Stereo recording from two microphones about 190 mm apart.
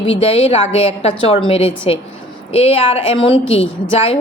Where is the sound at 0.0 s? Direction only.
30° left (ahead or behind).